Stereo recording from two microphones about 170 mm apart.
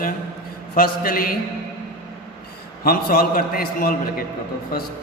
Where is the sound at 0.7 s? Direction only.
60° left (ahead or behind).